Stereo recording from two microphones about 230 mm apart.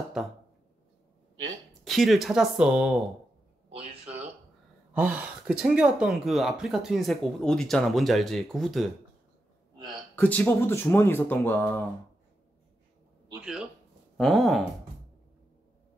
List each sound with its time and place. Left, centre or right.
0.2 s speech: centre
1.9 s speech: centre
4.0 s a sound: right
4.9 s speech: centre
10.1 s speech: centre
13.3 s speech: centre